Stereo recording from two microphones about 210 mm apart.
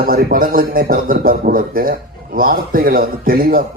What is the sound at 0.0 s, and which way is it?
A man's voice, 40° right (ahead or behind).